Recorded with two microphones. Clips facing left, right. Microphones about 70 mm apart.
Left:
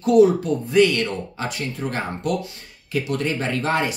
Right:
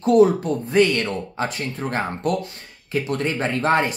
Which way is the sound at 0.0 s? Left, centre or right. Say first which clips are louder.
Even; right.